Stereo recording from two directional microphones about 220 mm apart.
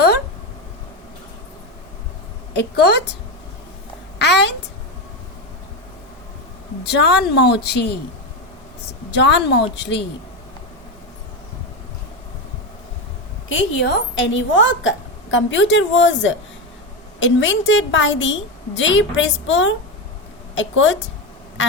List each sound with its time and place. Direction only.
2.5 s a woman's voice: 50° left (ahead or behind)
4.2 s a woman's voice: 50° left (ahead or behind)
6.8 s a woman's voice: 50° left (ahead or behind)
9.1 s a woman's voice: 55° left (ahead or behind)
13.8 s a woman's voice: 55° left (ahead or behind)
21.6 s quack: 60° left (ahead or behind)